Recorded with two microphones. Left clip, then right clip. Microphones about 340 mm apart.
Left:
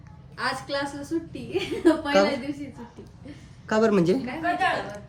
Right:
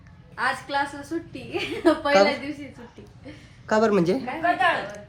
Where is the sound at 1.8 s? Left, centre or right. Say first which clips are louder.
Even; right.